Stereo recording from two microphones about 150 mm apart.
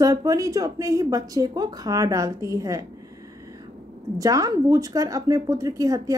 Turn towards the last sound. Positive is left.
turn(degrees=-20)  # may be behind; listen again after turning